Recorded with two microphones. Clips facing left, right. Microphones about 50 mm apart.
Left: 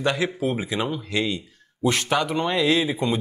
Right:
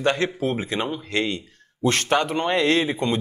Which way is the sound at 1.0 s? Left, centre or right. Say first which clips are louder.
Right 1 dB; right.